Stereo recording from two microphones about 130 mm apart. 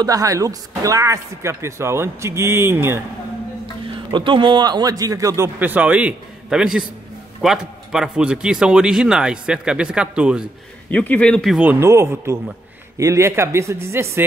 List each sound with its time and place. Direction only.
0.0 s a man's voice: 25° right (ahead or behind)
3.8 s a man's voice: 40° right (ahead or behind); by 10.4 s 5° right (ahead or behind)
10.9 s speech: 10° left (ahead or behind)
11.6 s a man's voice: 15° right (ahead or behind)